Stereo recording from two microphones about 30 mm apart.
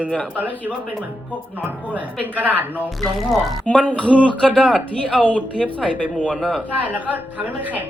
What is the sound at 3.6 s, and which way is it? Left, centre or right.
Speech, left.